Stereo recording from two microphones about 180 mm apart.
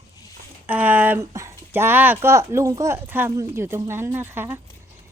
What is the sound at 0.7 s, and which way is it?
Speech, 10° right (ahead or behind).